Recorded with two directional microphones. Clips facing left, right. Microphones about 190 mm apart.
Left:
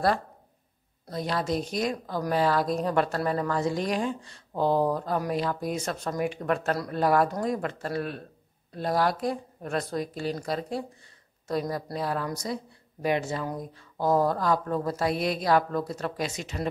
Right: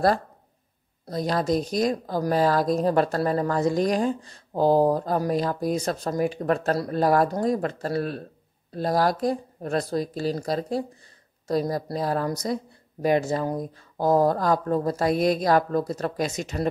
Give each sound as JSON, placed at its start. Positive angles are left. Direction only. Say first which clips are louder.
{"t": 1.1, "sound": "speech", "louder": "right 5 dB", "side_deg": -40}